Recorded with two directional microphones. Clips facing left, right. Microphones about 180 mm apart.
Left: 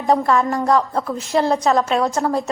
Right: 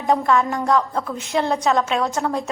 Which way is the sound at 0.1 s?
Centre (ahead or behind).